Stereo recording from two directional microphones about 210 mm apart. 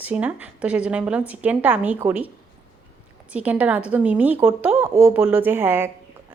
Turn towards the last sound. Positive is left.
turn(degrees=-10)  # may be behind; listen again after turning